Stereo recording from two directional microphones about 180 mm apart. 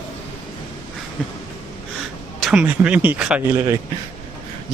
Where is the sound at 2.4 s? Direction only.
5° right (ahead or behind).